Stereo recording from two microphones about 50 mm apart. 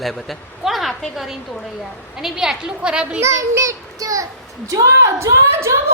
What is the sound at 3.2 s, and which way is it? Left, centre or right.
A child's voice, right.